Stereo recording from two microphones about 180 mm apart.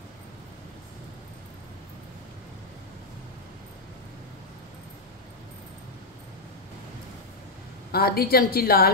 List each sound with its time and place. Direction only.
7.9 s a woman's voice: 60° left (ahead or behind)